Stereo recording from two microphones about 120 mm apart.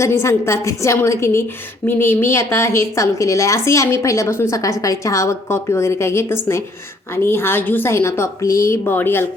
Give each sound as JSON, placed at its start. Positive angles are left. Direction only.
{"t": 0.0, "sound": "a woman's voice", "side_deg": 25}